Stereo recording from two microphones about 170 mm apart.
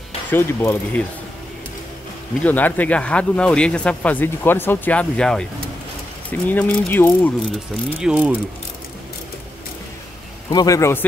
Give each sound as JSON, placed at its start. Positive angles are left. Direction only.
{"t": 0.3, "sound": "speech", "side_deg": 15}
{"t": 2.4, "sound": "speech", "side_deg": 10}
{"t": 8.0, "sound": "ratchet", "side_deg": -5}
{"t": 10.5, "sound": "a man's voice", "side_deg": 20}